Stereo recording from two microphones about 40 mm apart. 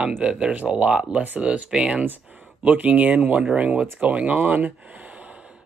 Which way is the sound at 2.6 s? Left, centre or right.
Right.